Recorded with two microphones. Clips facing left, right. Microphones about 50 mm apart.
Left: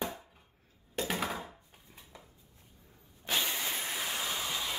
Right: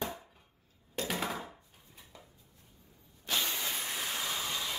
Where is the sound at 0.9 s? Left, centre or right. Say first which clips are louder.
Left 1 dB; centre.